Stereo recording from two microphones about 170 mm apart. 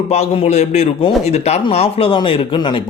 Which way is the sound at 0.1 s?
40° left (ahead or behind).